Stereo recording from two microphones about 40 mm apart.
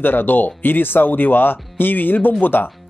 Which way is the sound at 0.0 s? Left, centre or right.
Left.